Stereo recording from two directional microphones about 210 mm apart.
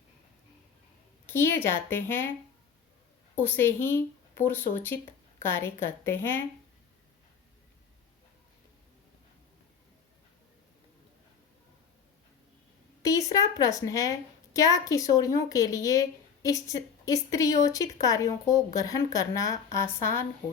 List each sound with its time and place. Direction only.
1.3 s a woman's voice: 10° left (ahead or behind)
3.3 s a woman's voice: 10° left (ahead or behind)
13.0 s a woman's voice: 15° left (ahead or behind)